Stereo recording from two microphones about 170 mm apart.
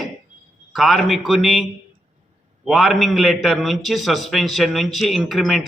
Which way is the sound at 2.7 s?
Centre (ahead or behind).